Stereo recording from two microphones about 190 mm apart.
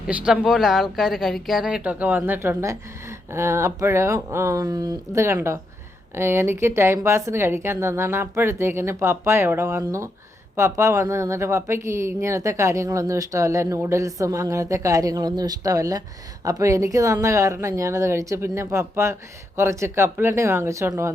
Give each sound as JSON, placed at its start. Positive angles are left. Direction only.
{"t": 0.1, "sound": "a woman's voice", "side_deg": -5}